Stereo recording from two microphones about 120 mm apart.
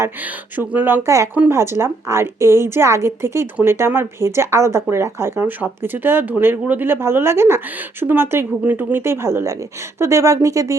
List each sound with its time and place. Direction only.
0.5 s a woman's voice: 15° right (ahead or behind)